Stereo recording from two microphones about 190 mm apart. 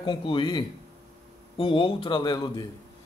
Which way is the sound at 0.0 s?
25° left (ahead or behind).